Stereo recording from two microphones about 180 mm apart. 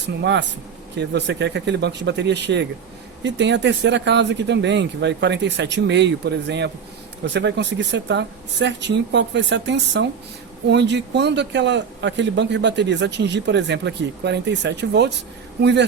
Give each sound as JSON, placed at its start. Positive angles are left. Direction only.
{"t": 0.2, "sound": "a man's voice", "side_deg": -75}